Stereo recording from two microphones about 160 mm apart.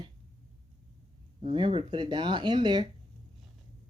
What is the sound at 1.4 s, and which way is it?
Speech, 30° right (ahead or behind).